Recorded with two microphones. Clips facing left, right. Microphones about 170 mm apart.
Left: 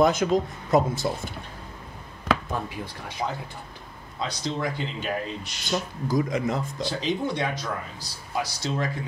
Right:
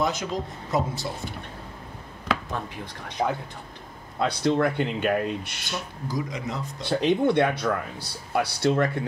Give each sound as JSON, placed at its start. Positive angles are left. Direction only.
{"t": 0.0, "sound": "speech", "side_deg": 50}
{"t": 2.5, "sound": "speech", "side_deg": 5}
{"t": 4.2, "sound": "speech", "side_deg": -60}
{"t": 5.7, "sound": "speech", "side_deg": 50}
{"t": 6.8, "sound": "speech", "side_deg": -60}